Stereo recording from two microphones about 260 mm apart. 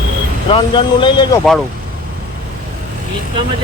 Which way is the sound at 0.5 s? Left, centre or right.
Centre.